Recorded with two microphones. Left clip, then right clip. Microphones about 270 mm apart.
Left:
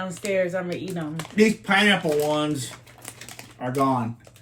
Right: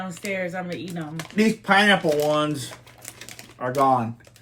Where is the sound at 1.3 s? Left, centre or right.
Centre.